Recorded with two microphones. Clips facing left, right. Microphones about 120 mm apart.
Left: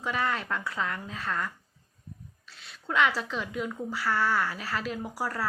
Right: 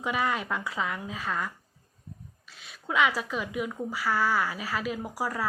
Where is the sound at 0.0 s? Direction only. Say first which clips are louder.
Right 1 dB; 10° right (ahead or behind).